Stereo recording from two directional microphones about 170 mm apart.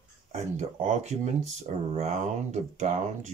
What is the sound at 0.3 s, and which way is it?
Speech, 40° right (ahead or behind).